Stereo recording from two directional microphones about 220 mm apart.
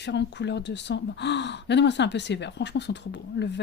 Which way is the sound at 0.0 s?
50° left (ahead or behind).